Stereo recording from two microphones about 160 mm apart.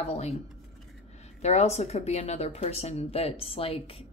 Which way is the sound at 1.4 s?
45° left (ahead or behind).